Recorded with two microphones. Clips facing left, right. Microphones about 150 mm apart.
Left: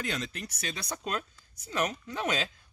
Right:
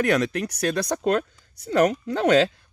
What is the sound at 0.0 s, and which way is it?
Speech, 70° right (ahead or behind).